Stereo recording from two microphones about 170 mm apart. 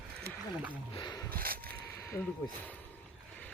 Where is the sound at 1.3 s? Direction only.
60° right (ahead or behind).